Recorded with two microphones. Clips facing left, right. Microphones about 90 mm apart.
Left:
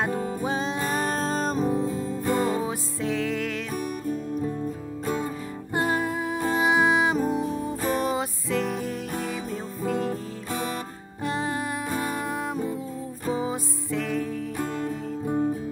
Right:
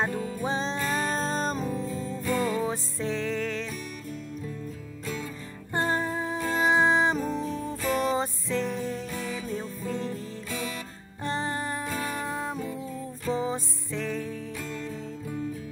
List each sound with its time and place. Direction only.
0.4 s music: 10° left (ahead or behind)
1.6 s music: 45° left (ahead or behind)
2.6 s music: 10° left (ahead or behind)
5.8 s music: 10° left (ahead or behind)
7.8 s music: 40° left (ahead or behind)
8.1 s music: 10° left (ahead or behind)
11.2 s music: 10° left (ahead or behind)
13.3 s music: 10° left (ahead or behind)
14.6 s music: 45° left (ahead or behind)